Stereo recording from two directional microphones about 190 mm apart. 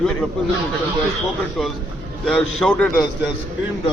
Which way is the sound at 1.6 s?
Centre (ahead or behind).